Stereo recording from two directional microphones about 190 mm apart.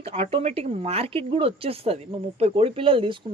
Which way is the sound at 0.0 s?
30° right (ahead or behind).